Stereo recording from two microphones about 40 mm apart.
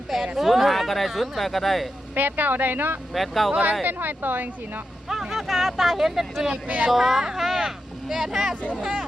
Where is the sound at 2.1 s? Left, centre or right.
Right.